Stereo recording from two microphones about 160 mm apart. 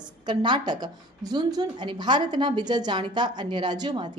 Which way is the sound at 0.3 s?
30° right (ahead or behind).